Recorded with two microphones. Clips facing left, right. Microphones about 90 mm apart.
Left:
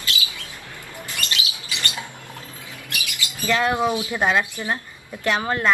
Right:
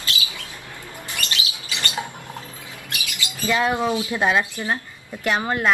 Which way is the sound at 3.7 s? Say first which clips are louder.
Even; 15° left (ahead or behind).